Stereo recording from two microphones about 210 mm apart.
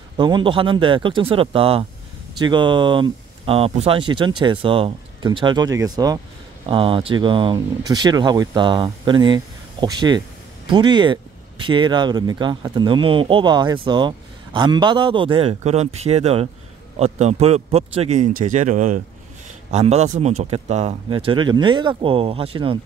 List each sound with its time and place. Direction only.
0.2 s a man's voice: 20° right (ahead or behind)